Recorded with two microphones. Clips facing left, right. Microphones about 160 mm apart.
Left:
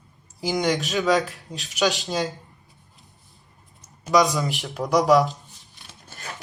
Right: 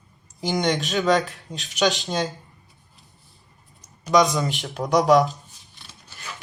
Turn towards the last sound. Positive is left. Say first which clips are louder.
# left 2 dB
turn(degrees=45)  # may be behind; listen again after turning